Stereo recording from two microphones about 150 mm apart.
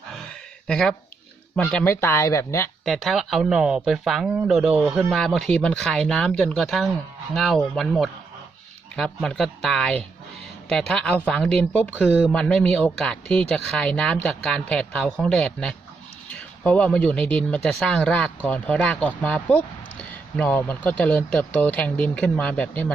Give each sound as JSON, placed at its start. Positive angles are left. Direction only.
{"t": 0.1, "sound": "a sound", "side_deg": 5}
{"t": 1.5, "sound": "speech", "side_deg": 10}
{"t": 2.8, "sound": "speech", "side_deg": 0}